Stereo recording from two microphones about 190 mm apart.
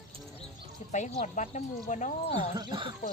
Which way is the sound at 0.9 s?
40° left (ahead or behind).